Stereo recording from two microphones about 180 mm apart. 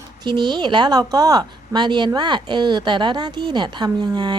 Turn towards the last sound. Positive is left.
turn(degrees=-25)  # may be behind; listen again after turning